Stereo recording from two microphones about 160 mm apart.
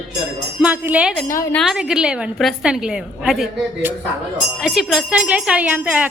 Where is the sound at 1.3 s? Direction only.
20° left (ahead or behind).